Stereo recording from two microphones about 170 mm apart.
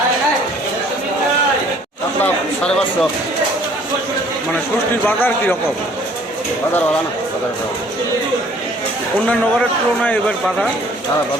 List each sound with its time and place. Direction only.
2.2 s a sound: 5° left (ahead or behind)
5.0 s a man's voice: 10° left (ahead or behind)
9.2 s speech: 5° left (ahead or behind)